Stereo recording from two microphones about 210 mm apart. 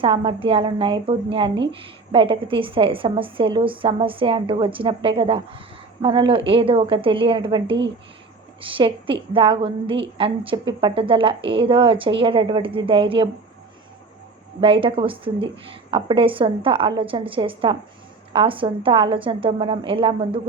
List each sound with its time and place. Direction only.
0.0 s a woman's voice: 25° right (ahead or behind)
14.6 s a woman's voice: 25° right (ahead or behind)